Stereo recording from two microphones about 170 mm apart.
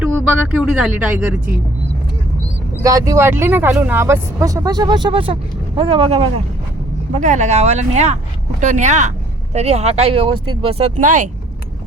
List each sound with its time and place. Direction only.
0.0 s speech: 5° right (ahead or behind)
2.8 s speech: 20° right (ahead or behind)
7.1 s speech: 45° right (ahead or behind)